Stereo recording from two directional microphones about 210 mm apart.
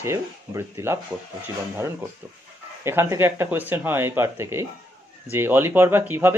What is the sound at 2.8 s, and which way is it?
Speech, 10° right (ahead or behind).